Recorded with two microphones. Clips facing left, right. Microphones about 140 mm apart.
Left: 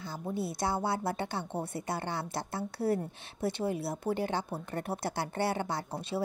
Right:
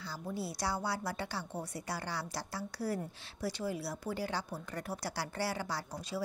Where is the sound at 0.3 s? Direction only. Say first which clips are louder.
Left 5 dB; 20° left (ahead or behind).